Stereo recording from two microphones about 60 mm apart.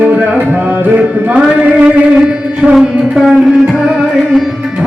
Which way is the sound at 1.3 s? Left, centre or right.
Right.